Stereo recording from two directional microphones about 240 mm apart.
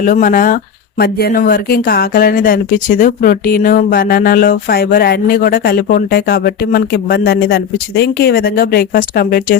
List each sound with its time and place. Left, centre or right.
0.0 s speech: left